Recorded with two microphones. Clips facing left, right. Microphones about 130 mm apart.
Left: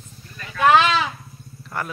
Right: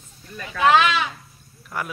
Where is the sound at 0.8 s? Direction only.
30° left (ahead or behind).